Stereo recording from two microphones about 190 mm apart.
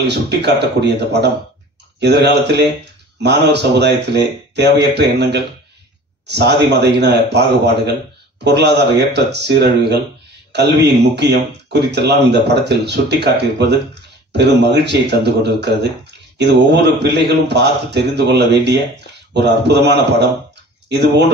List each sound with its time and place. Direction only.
0.0 s a man's voice: 60° right (ahead or behind)